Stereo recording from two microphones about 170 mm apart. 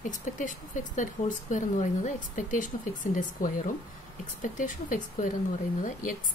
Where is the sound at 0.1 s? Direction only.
50° left (ahead or behind).